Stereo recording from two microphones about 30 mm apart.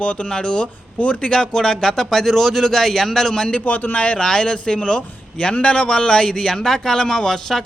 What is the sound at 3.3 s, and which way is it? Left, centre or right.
Speech, left.